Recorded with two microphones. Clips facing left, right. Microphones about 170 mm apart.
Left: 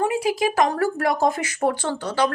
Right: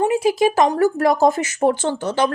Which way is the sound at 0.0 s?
25° right (ahead or behind).